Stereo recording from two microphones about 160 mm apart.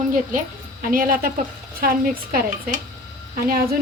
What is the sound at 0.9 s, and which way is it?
A woman's voice, 60° right (ahead or behind).